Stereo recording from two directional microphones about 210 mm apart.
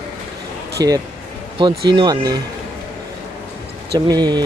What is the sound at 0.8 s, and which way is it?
Speech, 15° right (ahead or behind).